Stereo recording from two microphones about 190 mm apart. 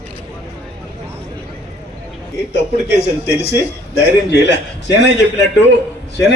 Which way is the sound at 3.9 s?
60° left (ahead or behind).